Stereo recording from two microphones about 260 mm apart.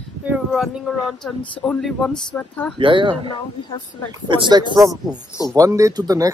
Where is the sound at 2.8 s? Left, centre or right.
Centre.